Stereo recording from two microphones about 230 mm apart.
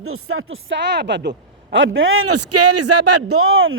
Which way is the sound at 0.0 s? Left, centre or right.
Right.